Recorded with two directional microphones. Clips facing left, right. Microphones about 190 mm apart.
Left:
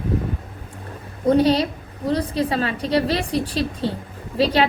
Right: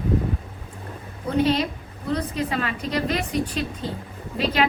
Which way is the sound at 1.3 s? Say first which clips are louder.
Left 5 dB; 35° left (ahead or behind).